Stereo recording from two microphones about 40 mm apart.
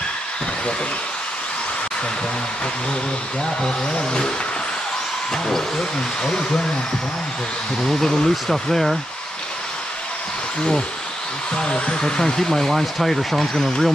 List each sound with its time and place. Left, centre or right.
3.6 s speech: centre
6.2 s speech: centre
7.8 s speech: centre
11.5 s speech: left